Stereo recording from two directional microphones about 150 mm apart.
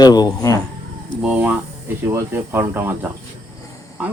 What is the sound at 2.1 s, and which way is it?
Speech, 15° right (ahead or behind).